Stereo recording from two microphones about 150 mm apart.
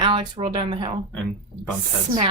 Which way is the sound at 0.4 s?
40° right (ahead or behind).